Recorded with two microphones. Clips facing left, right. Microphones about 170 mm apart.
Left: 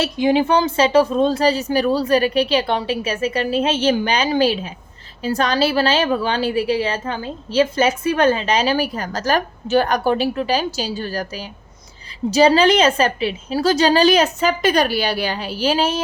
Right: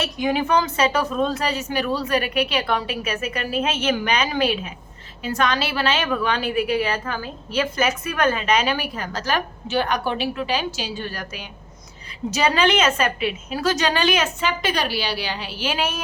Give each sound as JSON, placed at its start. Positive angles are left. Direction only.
{"t": 0.0, "sound": "a woman's voice", "side_deg": 30}